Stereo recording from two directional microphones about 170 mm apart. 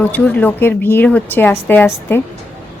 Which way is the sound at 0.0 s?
10° left (ahead or behind).